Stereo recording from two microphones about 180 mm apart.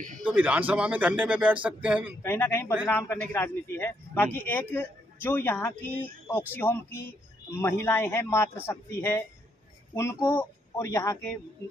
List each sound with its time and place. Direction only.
0.2 s speech: 5° right (ahead or behind)
2.2 s a man's voice: 10° left (ahead or behind)